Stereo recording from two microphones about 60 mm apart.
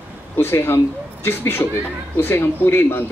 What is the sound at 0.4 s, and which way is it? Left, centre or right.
Speech, left.